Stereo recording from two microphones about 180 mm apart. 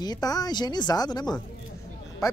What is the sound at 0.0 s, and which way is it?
Speech, 20° left (ahead or behind).